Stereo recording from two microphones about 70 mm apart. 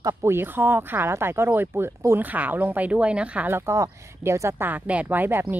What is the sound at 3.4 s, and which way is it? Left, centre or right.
Speech, right.